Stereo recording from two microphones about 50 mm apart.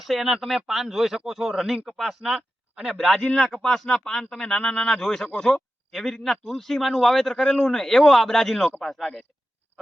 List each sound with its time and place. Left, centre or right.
0.1 s speech: centre